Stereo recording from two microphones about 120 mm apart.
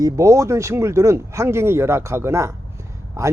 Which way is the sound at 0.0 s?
25° right (ahead or behind).